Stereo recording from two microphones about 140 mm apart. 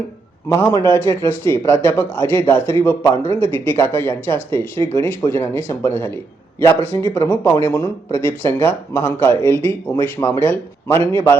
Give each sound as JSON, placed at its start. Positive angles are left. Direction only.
{"t": 0.4, "sound": "speech", "side_deg": 20}